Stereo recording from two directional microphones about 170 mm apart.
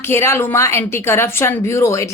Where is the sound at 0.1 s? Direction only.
15° left (ahead or behind).